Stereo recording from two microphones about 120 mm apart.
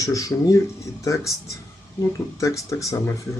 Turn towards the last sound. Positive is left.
turn(degrees=25)  # may be behind; listen again after turning